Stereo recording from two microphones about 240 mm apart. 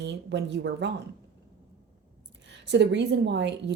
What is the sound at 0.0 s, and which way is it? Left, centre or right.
Speech, right.